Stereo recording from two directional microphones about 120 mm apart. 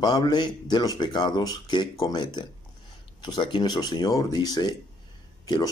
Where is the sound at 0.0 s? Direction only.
35° left (ahead or behind).